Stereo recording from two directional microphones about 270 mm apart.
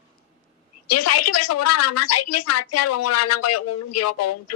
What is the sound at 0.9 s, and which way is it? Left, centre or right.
A woman's voice, left.